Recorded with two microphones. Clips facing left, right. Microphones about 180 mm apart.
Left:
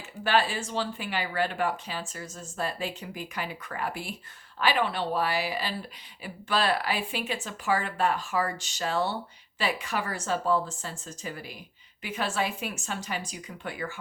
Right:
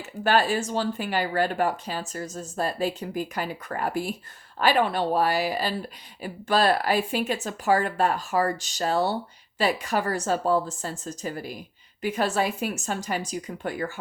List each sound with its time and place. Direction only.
0.3 s speech: 45° right (ahead or behind)